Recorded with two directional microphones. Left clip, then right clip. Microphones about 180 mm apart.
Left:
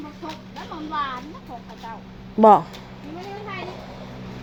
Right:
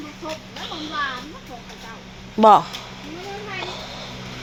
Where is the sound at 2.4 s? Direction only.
20° left (ahead or behind).